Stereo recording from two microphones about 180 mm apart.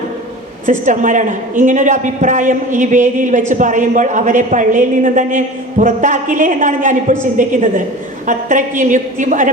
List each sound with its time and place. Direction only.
0.6 s a woman's voice: 45° right (ahead or behind)